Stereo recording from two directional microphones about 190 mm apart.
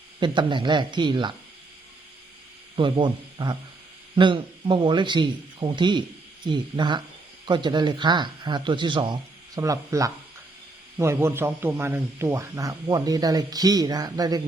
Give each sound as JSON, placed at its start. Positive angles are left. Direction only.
{"t": 0.2, "sound": "a man's voice", "side_deg": -25}
{"t": 2.7, "sound": "a man's voice", "side_deg": -25}